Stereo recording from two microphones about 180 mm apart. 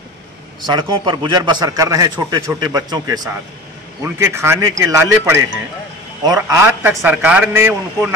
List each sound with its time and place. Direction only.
0.7 s a man's voice: 25° right (ahead or behind)